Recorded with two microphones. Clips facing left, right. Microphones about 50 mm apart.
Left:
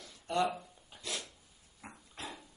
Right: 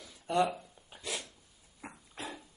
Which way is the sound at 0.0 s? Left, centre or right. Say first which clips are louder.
Right 3 dB; centre.